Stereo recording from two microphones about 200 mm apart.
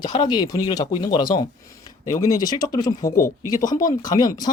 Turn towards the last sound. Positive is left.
turn(degrees=20)  # may be behind; listen again after turning